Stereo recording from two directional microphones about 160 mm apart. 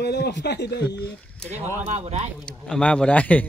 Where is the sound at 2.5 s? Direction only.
5° left (ahead or behind).